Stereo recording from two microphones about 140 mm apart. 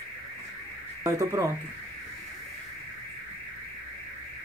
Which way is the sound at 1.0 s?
25° right (ahead or behind).